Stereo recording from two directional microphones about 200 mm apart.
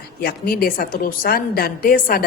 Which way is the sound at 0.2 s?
50° left (ahead or behind).